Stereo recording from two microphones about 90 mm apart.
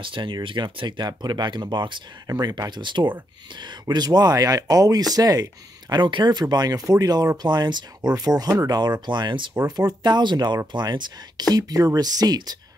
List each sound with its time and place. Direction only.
0.0 s speech: 65° right (ahead or behind)
2.2 s speech: 45° right (ahead or behind)
6.5 s speech: 45° right (ahead or behind); by 9.6 s 60° right (ahead or behind)
9.7 s speech: 50° right (ahead or behind)
11.5 s speech: 40° right (ahead or behind)